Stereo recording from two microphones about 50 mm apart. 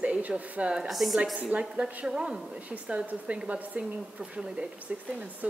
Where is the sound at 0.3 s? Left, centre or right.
Centre.